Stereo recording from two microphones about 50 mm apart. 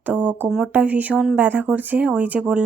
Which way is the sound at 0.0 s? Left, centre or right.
Right.